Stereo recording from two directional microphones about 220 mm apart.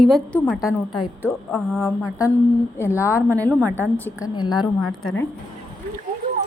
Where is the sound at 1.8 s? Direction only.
15° left (ahead or behind).